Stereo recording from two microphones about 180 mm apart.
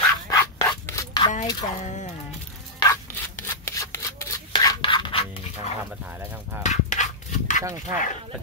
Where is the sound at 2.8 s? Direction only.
15° left (ahead or behind).